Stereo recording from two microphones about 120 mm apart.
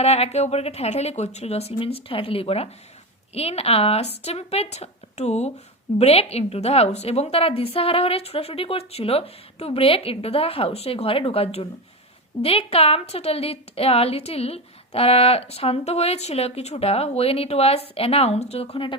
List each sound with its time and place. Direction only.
0.0 s a woman's voice: 60° left (ahead or behind)